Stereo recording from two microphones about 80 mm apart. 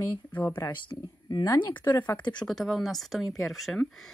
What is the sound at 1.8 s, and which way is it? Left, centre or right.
Speech, left.